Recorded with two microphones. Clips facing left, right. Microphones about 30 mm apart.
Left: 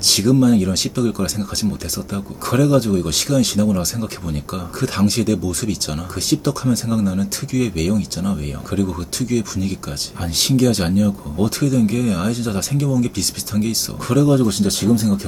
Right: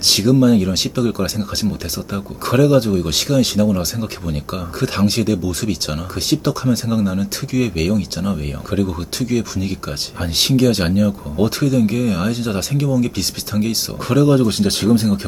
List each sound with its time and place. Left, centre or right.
0.0 s speech: centre; by 15.2 s right